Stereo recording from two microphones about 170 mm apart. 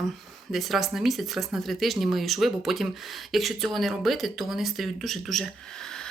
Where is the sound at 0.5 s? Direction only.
Centre (ahead or behind).